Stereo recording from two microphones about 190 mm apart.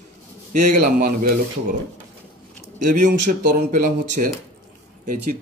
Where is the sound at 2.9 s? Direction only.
45° right (ahead or behind).